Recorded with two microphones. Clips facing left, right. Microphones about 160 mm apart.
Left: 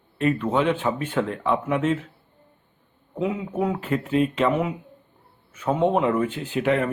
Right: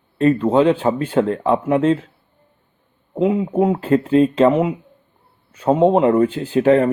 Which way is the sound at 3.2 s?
30° right (ahead or behind).